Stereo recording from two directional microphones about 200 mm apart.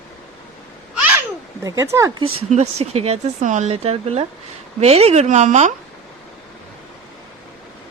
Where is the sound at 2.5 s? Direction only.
35° right (ahead or behind).